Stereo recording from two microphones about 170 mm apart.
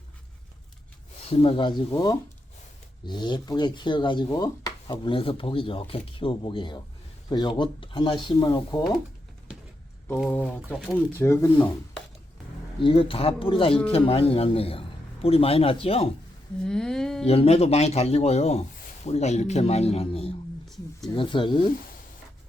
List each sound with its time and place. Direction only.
1.2 s a man's voice: 35° left (ahead or behind)
10.7 s speech: 10° left (ahead or behind)
12.8 s a man's voice: 35° left (ahead or behind)
16.6 s humming: 5° left (ahead or behind)
17.2 s a man's voice: 35° left (ahead or behind)
20.7 s a sound: centre (ahead or behind)
21.2 s speech: 30° left (ahead or behind)